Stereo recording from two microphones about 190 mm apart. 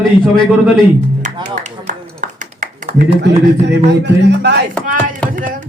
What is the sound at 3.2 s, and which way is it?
Speech, 65° right (ahead or behind).